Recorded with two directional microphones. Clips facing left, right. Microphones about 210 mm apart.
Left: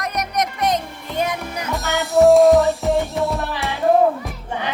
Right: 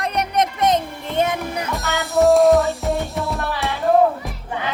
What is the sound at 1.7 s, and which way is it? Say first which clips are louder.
Music: left 3 dB; centre (ahead or behind).